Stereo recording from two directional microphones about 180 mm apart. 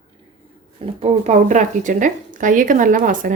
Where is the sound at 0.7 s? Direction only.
40° right (ahead or behind).